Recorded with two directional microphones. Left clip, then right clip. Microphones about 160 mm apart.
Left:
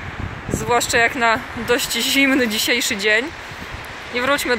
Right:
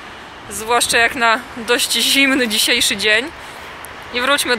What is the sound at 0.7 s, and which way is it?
Speech, 10° left (ahead or behind).